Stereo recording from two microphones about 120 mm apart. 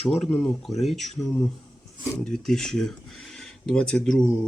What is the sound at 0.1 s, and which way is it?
Speech, 5° left (ahead or behind).